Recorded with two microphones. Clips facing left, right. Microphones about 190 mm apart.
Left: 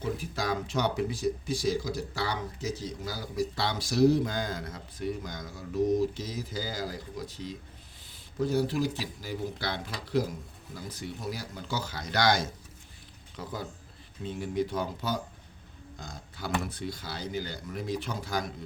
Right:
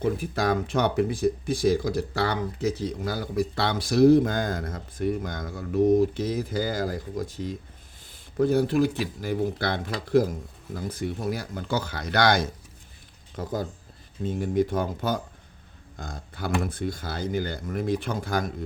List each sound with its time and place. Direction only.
0.0 s speech: 55° right (ahead or behind)
13.3 s speech: 45° right (ahead or behind)